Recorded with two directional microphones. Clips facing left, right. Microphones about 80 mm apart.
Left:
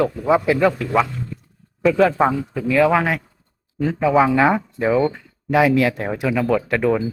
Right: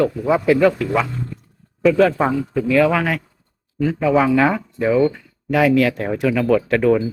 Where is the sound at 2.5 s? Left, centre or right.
Centre.